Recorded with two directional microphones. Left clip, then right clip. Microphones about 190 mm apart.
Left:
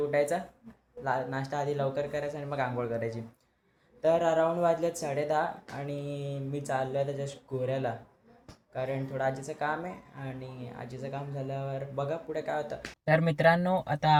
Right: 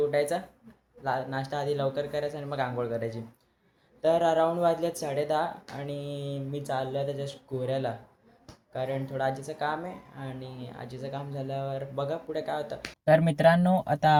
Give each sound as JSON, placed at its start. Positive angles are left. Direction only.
{"t": 0.1, "sound": "speech", "side_deg": 0}